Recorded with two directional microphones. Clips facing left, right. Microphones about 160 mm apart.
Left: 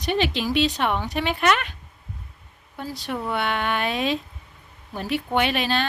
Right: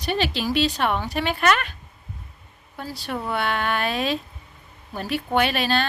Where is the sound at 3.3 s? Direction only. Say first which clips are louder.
Right 1 dB; 20° left (ahead or behind).